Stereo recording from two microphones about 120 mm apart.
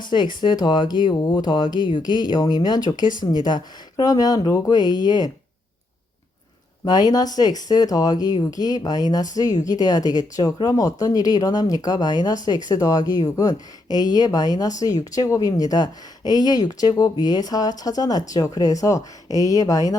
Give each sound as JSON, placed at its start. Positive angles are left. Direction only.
{"t": 0.1, "sound": "speech", "side_deg": 40}
{"t": 6.8, "sound": "speech", "side_deg": 35}